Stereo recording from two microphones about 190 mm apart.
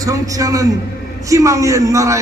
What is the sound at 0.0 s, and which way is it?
A man's voice, 20° right (ahead or behind).